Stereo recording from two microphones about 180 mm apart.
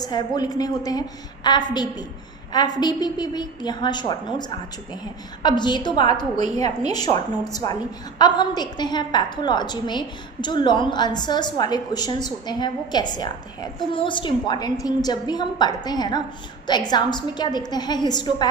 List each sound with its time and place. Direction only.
0.0 s a woman's voice: 25° left (ahead or behind)